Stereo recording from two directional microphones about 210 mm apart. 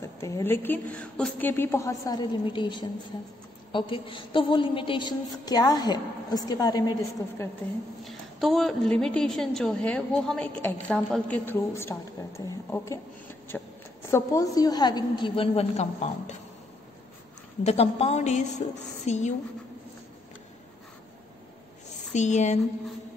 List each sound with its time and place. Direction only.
0.0 s a woman's voice: 15° left (ahead or behind)
8.0 s a woman's voice: centre (ahead or behind); by 16.3 s 30° left (ahead or behind)
17.6 s a woman's voice: 30° left (ahead or behind)
22.1 s a woman's voice: 35° left (ahead or behind)